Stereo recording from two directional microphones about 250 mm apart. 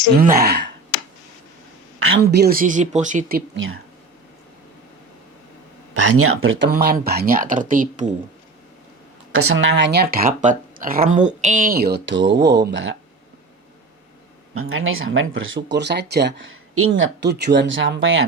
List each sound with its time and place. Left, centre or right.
0.2 s speech: right
2.2 s speech: right
5.9 s speech: right
6.7 s speech: right
9.3 s speech: right
14.7 s speech: right